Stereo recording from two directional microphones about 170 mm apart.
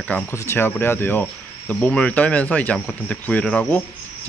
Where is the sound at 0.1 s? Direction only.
15° left (ahead or behind).